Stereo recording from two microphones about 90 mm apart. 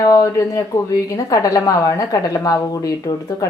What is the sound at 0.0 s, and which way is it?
A woman's voice, 40° left (ahead or behind).